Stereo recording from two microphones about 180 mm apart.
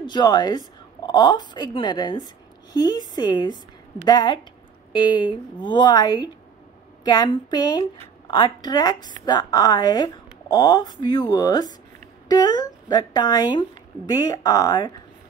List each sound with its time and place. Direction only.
0.0 s a woman's voice: 25° left (ahead or behind)